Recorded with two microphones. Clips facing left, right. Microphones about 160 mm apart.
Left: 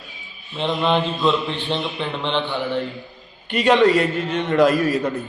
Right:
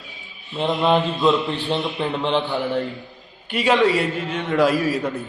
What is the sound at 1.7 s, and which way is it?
Mantra, 5° right (ahead or behind).